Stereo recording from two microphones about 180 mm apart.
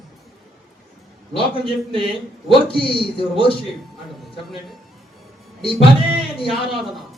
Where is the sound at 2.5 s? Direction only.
30° left (ahead or behind).